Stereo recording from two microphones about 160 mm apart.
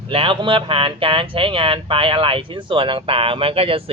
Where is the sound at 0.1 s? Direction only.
35° right (ahead or behind).